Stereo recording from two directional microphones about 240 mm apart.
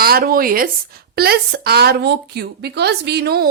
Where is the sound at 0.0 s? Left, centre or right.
Right.